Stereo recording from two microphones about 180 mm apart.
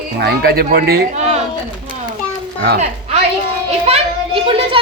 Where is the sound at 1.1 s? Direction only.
40° right (ahead or behind).